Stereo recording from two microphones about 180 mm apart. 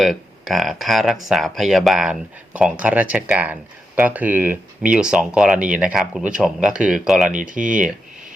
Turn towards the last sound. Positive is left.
turn(degrees=-45)  # may be behind; listen again after turning